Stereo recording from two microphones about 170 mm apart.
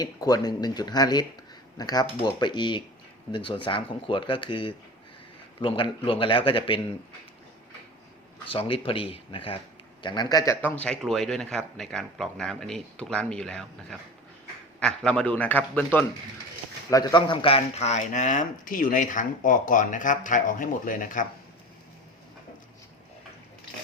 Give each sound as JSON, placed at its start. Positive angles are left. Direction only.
{"t": 0.0, "sound": "a man's voice", "side_deg": 25}
{"t": 8.5, "sound": "a man's voice", "side_deg": 35}
{"t": 16.9, "sound": "speech", "side_deg": 25}